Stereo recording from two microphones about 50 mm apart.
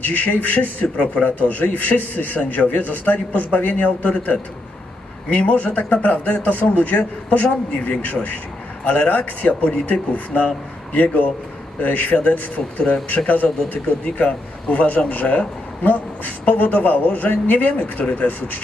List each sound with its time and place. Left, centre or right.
0.0 s a man's voice: left